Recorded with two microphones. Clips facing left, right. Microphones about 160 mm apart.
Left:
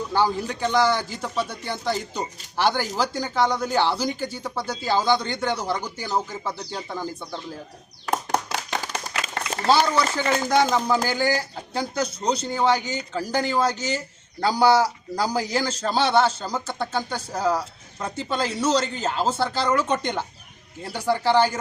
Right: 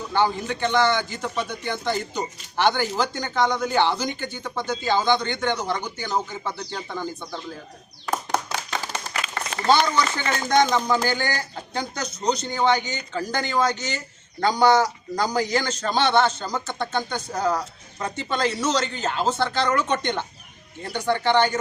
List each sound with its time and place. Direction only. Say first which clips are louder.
0.1 s a man's voice: right 1 dB; 10° left (ahead or behind)
9.2 s a sound: left 1 dB; 40° left (ahead or behind)
10.0 s a man's voice: left 2 dB; 5° left (ahead or behind)